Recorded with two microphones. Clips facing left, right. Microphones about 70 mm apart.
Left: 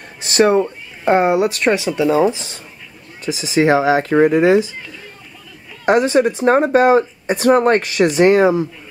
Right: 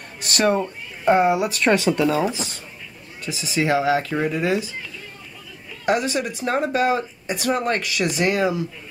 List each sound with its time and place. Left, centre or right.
0.5 s speech: left
1.3 s speech: left
1.6 s speech: centre
2.0 s speech: left
3.5 s speech: left
5.9 s speech: left